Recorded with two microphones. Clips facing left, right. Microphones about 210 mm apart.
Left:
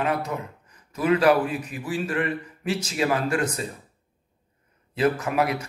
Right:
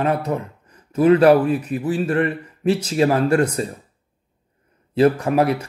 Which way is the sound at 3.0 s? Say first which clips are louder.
Right 7 dB; 35° right (ahead or behind).